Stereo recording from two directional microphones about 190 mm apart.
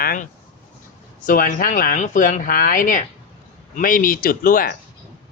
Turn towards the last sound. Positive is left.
turn(degrees=50)  # may be behind; listen again after turning